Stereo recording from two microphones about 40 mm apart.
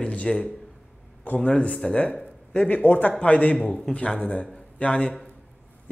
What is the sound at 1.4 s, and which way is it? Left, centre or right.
Speech, left.